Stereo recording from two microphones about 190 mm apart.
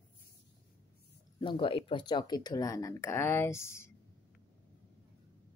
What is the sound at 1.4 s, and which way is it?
Speech, 25° left (ahead or behind).